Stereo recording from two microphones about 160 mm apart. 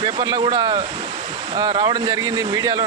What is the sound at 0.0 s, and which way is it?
Speech, 30° right (ahead or behind).